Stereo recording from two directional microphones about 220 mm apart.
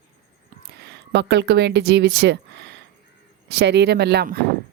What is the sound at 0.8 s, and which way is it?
Speech, 50° right (ahead or behind).